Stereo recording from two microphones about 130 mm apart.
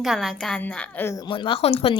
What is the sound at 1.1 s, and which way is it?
Speech, 35° left (ahead or behind).